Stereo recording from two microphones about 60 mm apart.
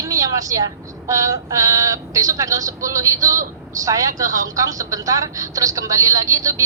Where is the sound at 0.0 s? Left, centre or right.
Right.